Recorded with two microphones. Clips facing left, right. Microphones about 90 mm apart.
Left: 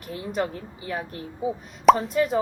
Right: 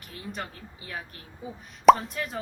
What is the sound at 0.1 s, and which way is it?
Speech, 5° left (ahead or behind).